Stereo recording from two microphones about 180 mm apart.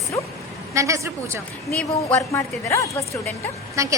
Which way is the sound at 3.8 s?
15° right (ahead or behind).